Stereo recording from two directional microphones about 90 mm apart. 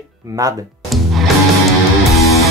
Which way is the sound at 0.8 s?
Centre (ahead or behind).